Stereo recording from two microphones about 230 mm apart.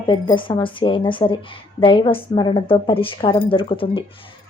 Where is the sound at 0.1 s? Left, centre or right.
Left.